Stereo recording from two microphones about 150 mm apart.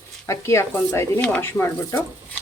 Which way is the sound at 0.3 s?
15° left (ahead or behind).